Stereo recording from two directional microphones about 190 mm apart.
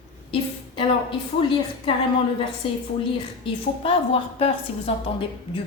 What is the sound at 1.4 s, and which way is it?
Speech, 25° left (ahead or behind).